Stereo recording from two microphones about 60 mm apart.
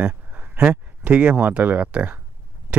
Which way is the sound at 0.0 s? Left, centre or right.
Right.